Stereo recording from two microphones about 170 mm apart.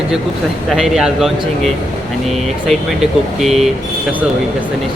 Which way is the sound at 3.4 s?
Centre (ahead or behind).